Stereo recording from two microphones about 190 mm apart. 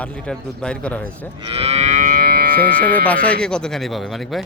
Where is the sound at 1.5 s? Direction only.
35° right (ahead or behind); by 2.5 s 50° right (ahead or behind).